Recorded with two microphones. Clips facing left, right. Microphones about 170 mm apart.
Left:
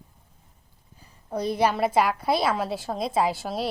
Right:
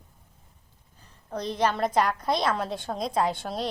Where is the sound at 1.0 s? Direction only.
10° left (ahead or behind).